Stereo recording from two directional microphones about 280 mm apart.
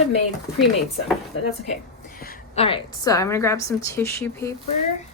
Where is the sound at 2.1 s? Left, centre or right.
Left.